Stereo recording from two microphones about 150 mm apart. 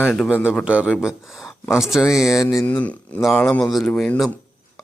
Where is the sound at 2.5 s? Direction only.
20° left (ahead or behind).